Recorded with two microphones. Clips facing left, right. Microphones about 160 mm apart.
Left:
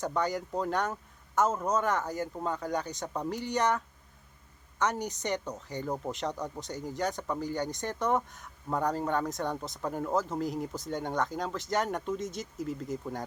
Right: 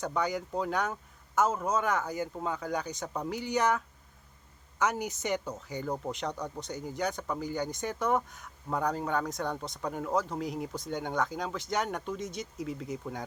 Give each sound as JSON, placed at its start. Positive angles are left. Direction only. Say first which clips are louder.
{"t": 0.0, "sound": "speech", "louder": "left 1 dB", "side_deg": 0}